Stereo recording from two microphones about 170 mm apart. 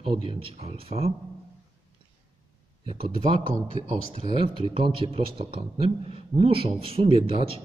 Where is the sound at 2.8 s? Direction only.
30° right (ahead or behind).